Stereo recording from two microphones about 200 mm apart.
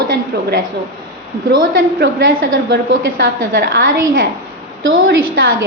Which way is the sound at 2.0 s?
60° right (ahead or behind).